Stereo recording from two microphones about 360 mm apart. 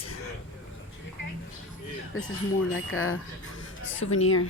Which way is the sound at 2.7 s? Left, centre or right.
Left.